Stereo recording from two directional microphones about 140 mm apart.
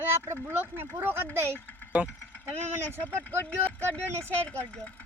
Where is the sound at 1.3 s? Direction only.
15° left (ahead or behind).